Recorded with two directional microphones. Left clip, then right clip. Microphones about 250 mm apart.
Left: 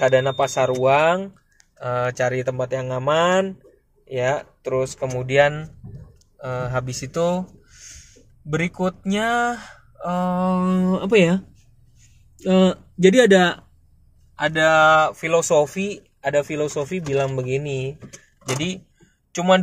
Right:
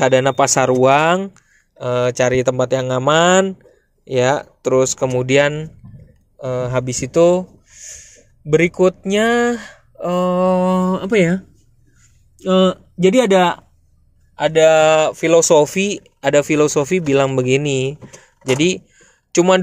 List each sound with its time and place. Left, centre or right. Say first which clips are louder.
0.0 s speech: right 4 dB; right
13.0 s speech: right 1 dB; right
14.4 s speech: right 4 dB; right